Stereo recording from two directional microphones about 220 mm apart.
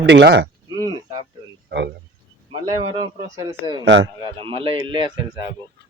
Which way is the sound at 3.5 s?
20° right (ahead or behind).